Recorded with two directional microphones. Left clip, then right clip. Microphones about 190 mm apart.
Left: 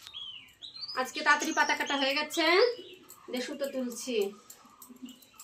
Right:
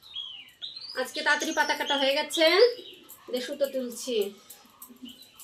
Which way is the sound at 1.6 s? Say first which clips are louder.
Right 3 dB; 25° left (ahead or behind).